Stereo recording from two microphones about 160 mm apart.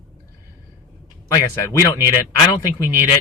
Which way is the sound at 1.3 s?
20° left (ahead or behind).